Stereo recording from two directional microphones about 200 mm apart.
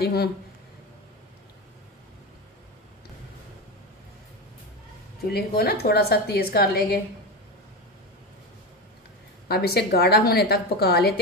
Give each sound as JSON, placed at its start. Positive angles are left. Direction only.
{"t": 0.0, "sound": "a woman's voice", "side_deg": 50}
{"t": 5.2, "sound": "a woman's voice", "side_deg": 50}
{"t": 9.5, "sound": "a woman's voice", "side_deg": 50}